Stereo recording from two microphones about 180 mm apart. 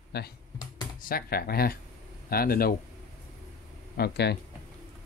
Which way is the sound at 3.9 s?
65° left (ahead or behind).